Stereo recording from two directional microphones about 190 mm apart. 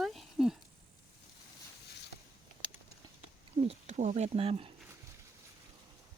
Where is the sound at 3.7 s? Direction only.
35° right (ahead or behind).